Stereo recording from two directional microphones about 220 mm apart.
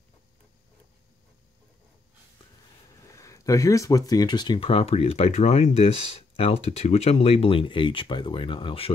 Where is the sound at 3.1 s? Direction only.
15° left (ahead or behind).